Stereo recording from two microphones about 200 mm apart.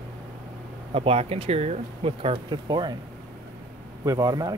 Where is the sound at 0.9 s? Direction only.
30° right (ahead or behind).